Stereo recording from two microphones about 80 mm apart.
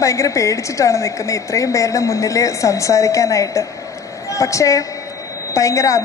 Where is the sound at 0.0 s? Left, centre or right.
Left.